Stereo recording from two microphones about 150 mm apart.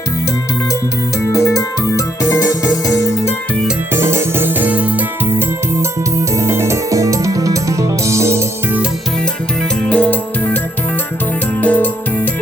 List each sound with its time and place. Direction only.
1.3 s music: 20° left (ahead or behind)
3.9 s music: 15° right (ahead or behind)
9.8 s music: 10° left (ahead or behind)
11.6 s music: 10° left (ahead or behind)